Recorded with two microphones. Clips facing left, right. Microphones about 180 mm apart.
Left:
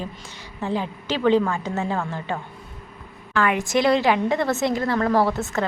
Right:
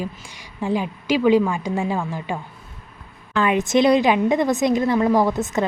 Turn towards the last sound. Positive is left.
turn(degrees=-15)  # may be behind; listen again after turning